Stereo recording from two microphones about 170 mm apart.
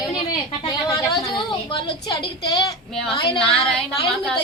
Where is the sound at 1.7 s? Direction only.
25° left (ahead or behind).